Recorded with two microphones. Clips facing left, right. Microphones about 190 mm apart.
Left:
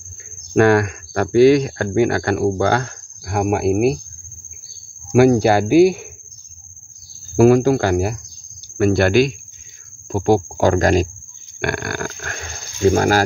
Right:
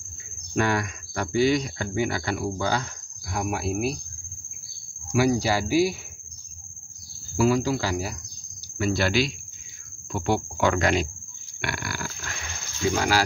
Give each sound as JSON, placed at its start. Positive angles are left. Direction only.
{"t": 0.6, "sound": "speech", "side_deg": 60}
{"t": 5.1, "sound": "speech", "side_deg": 60}
{"t": 7.3, "sound": "speech", "side_deg": 55}
{"t": 10.1, "sound": "speech", "side_deg": 40}
{"t": 11.6, "sound": "speech", "side_deg": 55}